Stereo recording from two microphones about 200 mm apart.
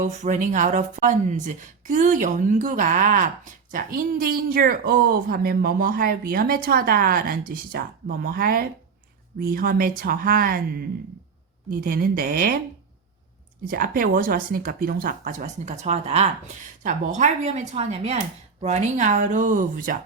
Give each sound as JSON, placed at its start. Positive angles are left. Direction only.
{"t": 0.0, "sound": "speech", "side_deg": -40}
{"t": 13.7, "sound": "speech", "side_deg": -45}